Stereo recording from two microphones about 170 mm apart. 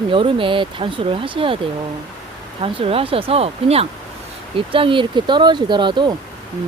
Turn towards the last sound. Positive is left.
turn(degrees=-25)  # may be behind; listen again after turning